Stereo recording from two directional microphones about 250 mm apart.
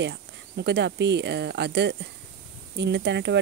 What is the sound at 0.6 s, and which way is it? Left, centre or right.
Speech, right.